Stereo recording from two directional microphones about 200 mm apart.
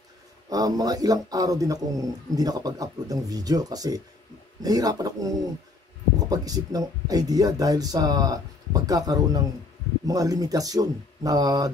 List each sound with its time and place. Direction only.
0.5 s a man's voice: 20° right (ahead or behind)